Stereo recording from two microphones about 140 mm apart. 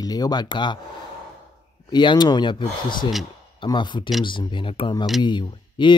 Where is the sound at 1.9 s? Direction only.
30° left (ahead or behind).